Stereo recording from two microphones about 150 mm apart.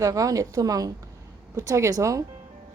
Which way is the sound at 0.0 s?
20° right (ahead or behind).